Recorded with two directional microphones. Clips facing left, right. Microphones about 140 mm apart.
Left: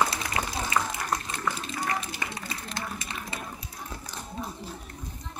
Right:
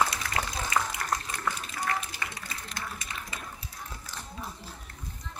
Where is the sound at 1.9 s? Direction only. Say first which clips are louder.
Right 1 dB; 20° left (ahead or behind).